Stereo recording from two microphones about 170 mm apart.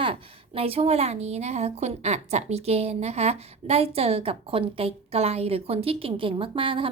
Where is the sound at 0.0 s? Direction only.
35° right (ahead or behind).